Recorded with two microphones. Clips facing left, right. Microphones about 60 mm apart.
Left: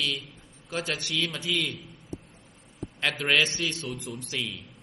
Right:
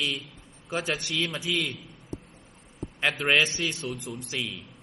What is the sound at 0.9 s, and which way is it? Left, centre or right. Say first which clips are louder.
Speech: even; right.